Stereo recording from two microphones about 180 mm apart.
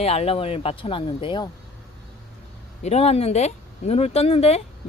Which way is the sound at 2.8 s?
35° left (ahead or behind).